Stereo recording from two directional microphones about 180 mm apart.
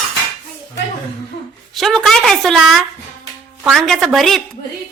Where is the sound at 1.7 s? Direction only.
Centre (ahead or behind).